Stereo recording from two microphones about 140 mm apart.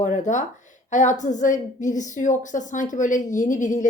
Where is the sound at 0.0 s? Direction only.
60° left (ahead or behind).